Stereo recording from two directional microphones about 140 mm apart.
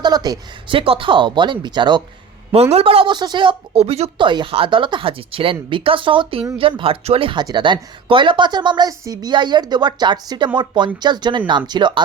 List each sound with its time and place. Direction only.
0.0 s a woman's voice: 30° right (ahead or behind)
2.5 s speech: 45° right (ahead or behind)
4.3 s a woman's voice: 35° right (ahead or behind)